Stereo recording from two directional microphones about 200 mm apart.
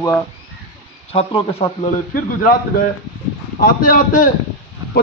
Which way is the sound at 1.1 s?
30° left (ahead or behind).